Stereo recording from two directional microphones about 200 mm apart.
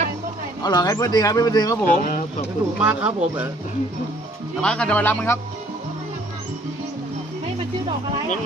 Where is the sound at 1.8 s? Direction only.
40° left (ahead or behind).